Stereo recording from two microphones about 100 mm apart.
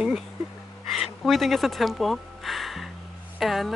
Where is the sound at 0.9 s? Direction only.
Centre (ahead or behind).